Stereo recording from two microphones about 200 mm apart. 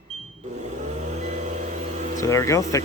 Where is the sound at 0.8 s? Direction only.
35° right (ahead or behind).